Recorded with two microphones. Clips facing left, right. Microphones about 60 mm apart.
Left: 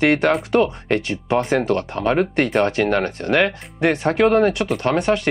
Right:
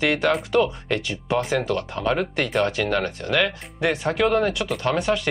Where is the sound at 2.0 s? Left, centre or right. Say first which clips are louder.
Left 5 dB; left.